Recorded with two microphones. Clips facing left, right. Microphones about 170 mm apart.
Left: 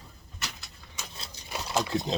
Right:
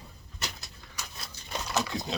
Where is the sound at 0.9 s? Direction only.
25° left (ahead or behind).